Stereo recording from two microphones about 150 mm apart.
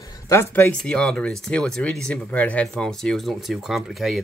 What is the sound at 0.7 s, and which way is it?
Speech, 5° left (ahead or behind).